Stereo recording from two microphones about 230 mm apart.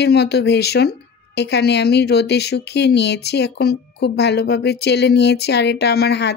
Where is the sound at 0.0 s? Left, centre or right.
Left.